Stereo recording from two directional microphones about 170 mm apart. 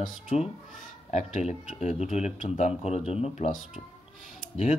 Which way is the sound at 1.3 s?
40° left (ahead or behind).